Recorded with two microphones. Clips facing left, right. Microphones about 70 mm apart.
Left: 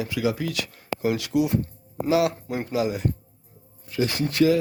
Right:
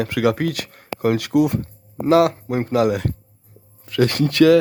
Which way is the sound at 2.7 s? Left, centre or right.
Right.